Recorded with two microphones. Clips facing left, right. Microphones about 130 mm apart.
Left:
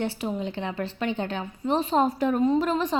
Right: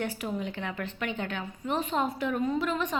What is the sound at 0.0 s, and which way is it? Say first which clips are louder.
A woman's voice: left 4 dB; 30° left (ahead or behind).